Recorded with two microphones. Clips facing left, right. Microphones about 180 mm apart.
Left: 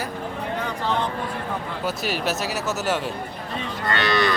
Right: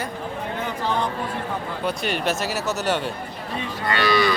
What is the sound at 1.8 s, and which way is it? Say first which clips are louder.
A man's voice: right 2 dB; 5° left (ahead or behind).